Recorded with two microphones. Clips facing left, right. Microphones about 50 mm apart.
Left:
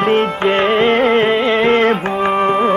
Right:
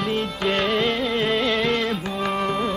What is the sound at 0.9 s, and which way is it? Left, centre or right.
Carnatic music, left.